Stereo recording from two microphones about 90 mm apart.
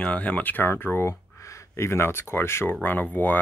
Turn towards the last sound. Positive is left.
turn(degrees=20)  # may be behind; listen again after turning